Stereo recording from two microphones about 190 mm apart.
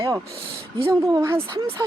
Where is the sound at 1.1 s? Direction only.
15° right (ahead or behind).